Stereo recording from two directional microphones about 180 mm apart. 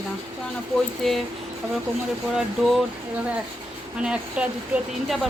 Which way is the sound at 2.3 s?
Centre (ahead or behind).